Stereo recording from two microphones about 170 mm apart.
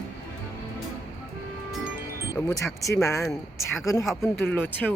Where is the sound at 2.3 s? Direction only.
15° left (ahead or behind).